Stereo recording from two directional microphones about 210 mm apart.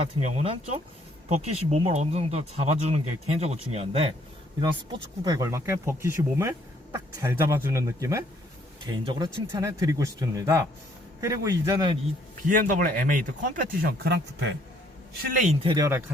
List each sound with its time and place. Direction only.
0.2 s speech: 35° right (ahead or behind); by 11.9 s 15° right (ahead or behind)
12.5 s speech: 40° right (ahead or behind); by 14.5 s 55° right (ahead or behind)
15.3 s speech: 40° right (ahead or behind)
15.6 s speech: 20° right (ahead or behind)